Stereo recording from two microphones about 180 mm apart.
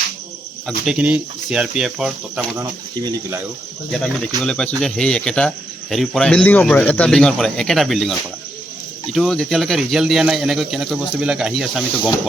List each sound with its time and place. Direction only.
0.9 s speech: 5° right (ahead or behind)
2.6 s speech: 20° right (ahead or behind)
4.4 s speech: 5° left (ahead or behind)
9.1 s speech: centre (ahead or behind)